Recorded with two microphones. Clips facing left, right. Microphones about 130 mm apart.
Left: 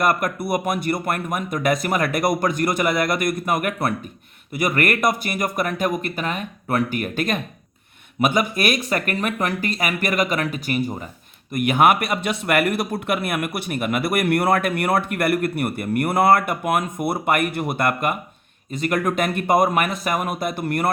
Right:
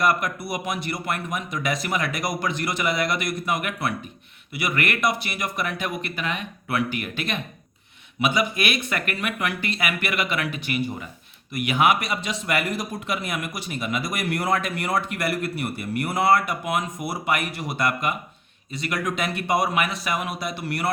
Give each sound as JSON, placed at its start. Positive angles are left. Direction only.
{"t": 0.0, "sound": "speech", "side_deg": 50}